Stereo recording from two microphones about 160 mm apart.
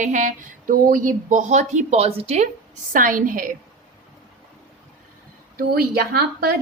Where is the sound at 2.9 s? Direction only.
55° right (ahead or behind).